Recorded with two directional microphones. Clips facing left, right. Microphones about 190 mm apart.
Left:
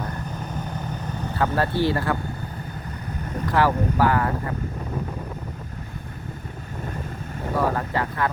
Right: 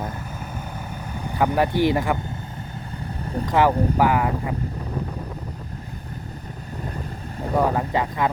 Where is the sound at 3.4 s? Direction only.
20° right (ahead or behind).